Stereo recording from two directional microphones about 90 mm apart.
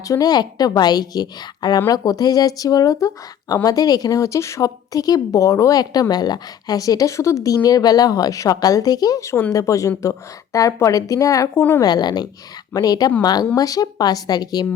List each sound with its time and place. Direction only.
0.1 s speech: 45° left (ahead or behind)
9.2 s speech: 25° left (ahead or behind)
9.5 s speech: 40° left (ahead or behind)
11.8 s speech: 50° left (ahead or behind)